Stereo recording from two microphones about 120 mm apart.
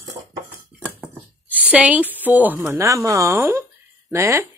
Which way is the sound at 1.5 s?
10° right (ahead or behind).